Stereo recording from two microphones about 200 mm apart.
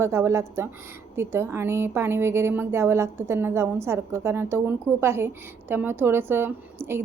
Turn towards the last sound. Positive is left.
turn(degrees=-10)  # may be behind; listen again after turning